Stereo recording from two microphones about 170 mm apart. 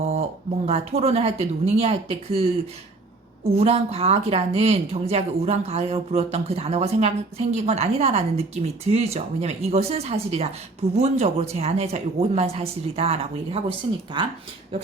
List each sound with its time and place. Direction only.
0.1 s speech: 40° right (ahead or behind)
3.5 s speech: 35° right (ahead or behind)